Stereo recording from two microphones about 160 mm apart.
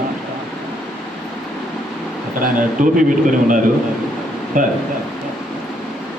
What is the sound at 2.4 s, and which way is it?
Speech, 55° right (ahead or behind).